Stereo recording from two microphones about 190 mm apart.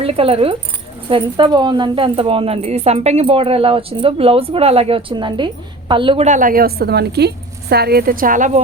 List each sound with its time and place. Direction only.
0.0 s a woman's voice: 30° right (ahead or behind)